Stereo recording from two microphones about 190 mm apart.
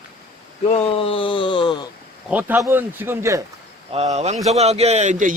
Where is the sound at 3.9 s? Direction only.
35° right (ahead or behind).